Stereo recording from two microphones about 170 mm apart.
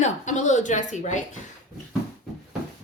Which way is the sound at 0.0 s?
45° left (ahead or behind).